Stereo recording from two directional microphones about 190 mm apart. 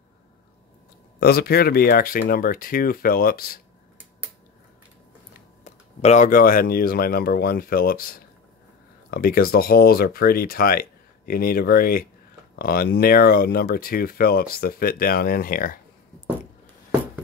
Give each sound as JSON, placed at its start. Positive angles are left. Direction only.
{"t": 1.2, "sound": "speech", "side_deg": 55}
{"t": 5.6, "sound": "speech", "side_deg": 35}